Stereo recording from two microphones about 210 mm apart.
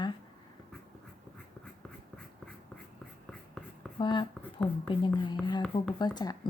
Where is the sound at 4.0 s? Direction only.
20° left (ahead or behind).